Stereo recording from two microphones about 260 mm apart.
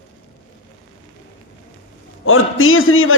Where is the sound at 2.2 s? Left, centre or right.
Left.